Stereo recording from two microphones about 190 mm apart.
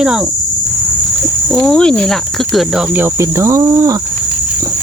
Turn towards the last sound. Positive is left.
turn(degrees=-15)  # may be behind; listen again after turning